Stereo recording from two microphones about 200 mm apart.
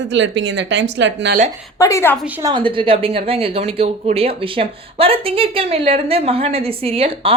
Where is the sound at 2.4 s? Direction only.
25° right (ahead or behind).